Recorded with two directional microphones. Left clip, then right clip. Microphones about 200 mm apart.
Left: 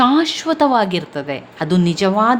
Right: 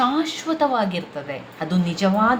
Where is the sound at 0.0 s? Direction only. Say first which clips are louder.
Left 7 dB; 45° left (ahead or behind).